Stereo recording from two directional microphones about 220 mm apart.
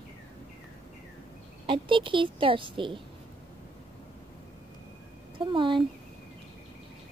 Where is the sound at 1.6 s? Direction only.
20° right (ahead or behind).